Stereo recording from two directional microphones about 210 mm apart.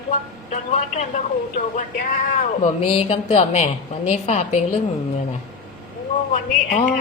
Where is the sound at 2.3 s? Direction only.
35° left (ahead or behind).